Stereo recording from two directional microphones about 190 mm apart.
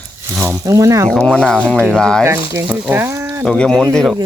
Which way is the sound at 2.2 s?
10° right (ahead or behind).